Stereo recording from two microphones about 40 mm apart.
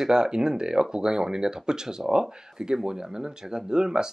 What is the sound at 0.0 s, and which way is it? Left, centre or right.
Speech, centre.